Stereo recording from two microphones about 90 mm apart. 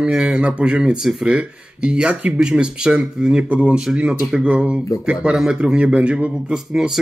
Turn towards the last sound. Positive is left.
turn(degrees=-5)  # may be behind; listen again after turning